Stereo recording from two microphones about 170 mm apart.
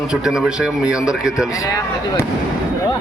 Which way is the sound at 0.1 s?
5° right (ahead or behind).